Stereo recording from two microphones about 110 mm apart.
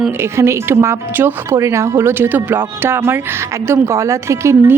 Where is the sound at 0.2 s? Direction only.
25° right (ahead or behind).